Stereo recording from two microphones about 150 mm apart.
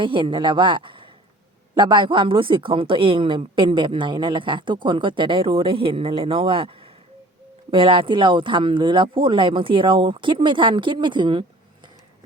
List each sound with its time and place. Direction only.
0.0 s speech: 35° right (ahead or behind)